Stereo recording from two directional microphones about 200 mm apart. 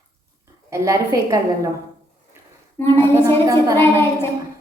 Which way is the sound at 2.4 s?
10° right (ahead or behind).